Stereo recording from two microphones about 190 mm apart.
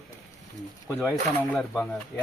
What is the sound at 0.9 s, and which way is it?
Speech, 10° left (ahead or behind).